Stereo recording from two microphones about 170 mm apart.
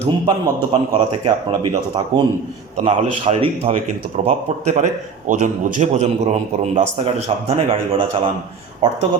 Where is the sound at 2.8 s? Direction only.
35° right (ahead or behind).